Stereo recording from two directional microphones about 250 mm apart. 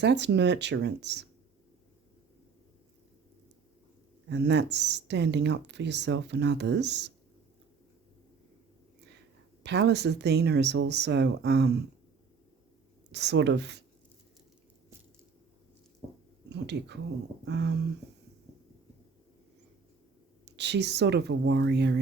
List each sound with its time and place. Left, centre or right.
0.0 s speech: right
4.3 s speech: right
9.6 s speech: right
13.1 s speech: right
16.5 s speech: right
20.4 s speech: right